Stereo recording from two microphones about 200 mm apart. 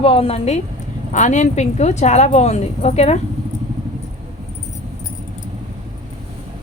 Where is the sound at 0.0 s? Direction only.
30° left (ahead or behind).